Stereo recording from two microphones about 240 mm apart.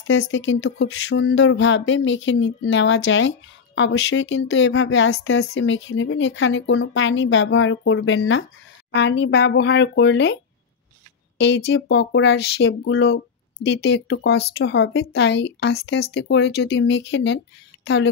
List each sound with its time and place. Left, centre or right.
0.3 s speech: left